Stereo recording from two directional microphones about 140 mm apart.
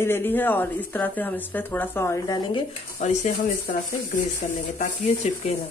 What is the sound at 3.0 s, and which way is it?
Speech, 60° left (ahead or behind).